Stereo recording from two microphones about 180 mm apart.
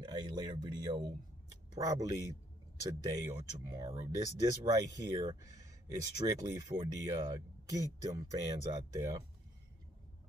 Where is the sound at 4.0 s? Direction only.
20° right (ahead or behind).